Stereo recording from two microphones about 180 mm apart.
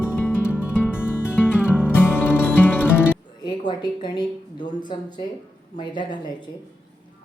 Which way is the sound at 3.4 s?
25° left (ahead or behind).